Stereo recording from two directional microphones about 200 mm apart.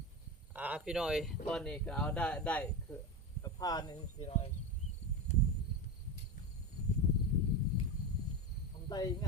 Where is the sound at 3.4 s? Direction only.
20° left (ahead or behind).